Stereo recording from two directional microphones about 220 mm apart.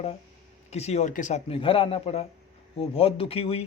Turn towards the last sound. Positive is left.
turn(degrees=25)  # may be behind; listen again after turning